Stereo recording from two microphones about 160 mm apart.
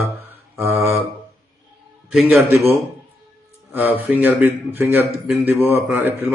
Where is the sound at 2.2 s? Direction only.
10° right (ahead or behind).